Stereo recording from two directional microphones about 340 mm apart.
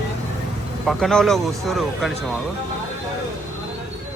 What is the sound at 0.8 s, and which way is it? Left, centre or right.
Speech, centre.